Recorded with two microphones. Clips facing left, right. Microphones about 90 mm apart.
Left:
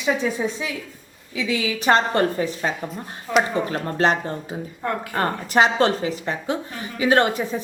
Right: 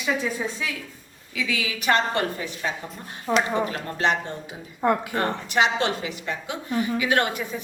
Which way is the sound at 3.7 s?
40° left (ahead or behind).